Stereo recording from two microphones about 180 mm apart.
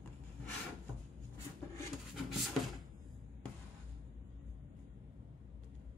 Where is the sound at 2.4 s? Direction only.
Centre (ahead or behind).